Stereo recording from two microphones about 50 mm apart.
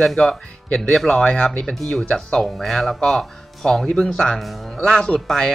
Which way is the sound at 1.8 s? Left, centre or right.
Centre.